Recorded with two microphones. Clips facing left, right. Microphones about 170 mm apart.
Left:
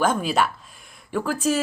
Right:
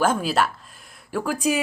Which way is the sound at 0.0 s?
5° right (ahead or behind).